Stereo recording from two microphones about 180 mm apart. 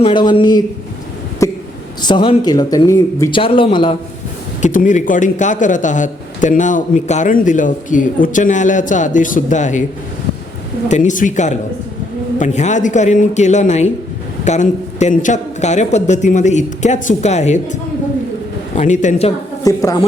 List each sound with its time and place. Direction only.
0.0 s speech: 25° left (ahead or behind)
1.4 s a sound: 15° left (ahead or behind)
2.0 s speech: 25° left (ahead or behind)
3.3 s speech: 30° left (ahead or behind)
4.6 s a man's voice: 45° left (ahead or behind)
10.8 s a man's voice: 40° left (ahead or behind)
18.8 s a man's voice: 40° left (ahead or behind)
19.6 s a woman's voice: 20° left (ahead or behind)